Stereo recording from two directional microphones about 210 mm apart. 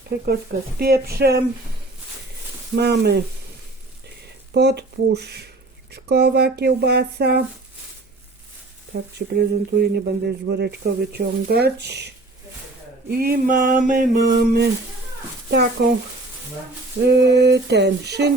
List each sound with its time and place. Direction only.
0.8 s speech: 45° right (ahead or behind)
2.8 s speech: 50° right (ahead or behind)
4.5 s speech: 55° right (ahead or behind)
8.9 s speech: 50° right (ahead or behind)
17.1 s speech: 50° right (ahead or behind)